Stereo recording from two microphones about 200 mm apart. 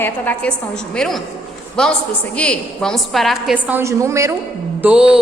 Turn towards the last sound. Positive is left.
turn(degrees=-5)  # may be behind; listen again after turning